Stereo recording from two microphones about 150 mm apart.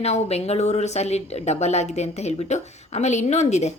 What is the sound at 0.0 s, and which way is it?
A woman's voice, 45° left (ahead or behind).